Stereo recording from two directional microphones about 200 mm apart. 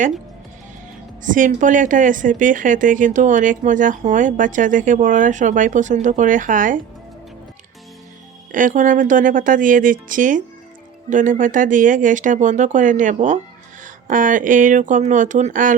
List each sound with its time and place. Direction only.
1.2 s a woman's voice: 40° right (ahead or behind)
8.5 s a woman's voice: 40° right (ahead or behind)